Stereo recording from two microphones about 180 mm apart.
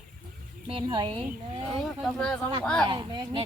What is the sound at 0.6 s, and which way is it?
Speech, 30° right (ahead or behind).